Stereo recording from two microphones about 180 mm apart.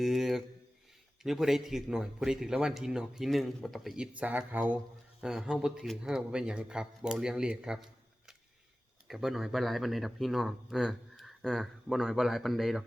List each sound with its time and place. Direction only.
0.0 s speech: centre (ahead or behind)
9.0 s speech: centre (ahead or behind)